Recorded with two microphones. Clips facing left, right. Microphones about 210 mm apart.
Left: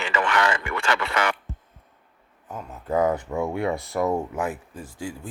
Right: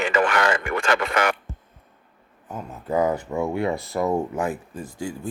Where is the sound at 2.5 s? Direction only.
5° right (ahead or behind).